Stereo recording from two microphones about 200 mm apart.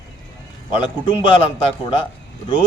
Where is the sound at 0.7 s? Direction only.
25° left (ahead or behind).